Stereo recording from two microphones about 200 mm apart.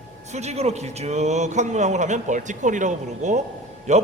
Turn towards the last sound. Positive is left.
turn(degrees=-35)  # may be behind; listen again after turning